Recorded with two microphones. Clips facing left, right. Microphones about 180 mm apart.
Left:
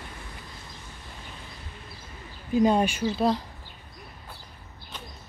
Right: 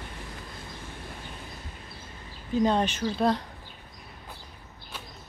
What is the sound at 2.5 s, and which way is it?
Speech, 10° left (ahead or behind).